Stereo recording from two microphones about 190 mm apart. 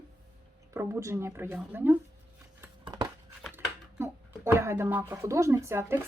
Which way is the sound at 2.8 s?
25° right (ahead or behind).